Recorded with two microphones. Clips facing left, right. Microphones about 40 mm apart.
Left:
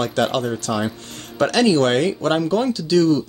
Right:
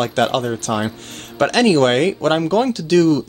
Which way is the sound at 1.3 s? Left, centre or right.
Right.